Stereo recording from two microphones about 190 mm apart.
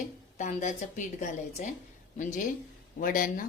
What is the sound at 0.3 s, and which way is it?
A woman's voice, 40° left (ahead or behind).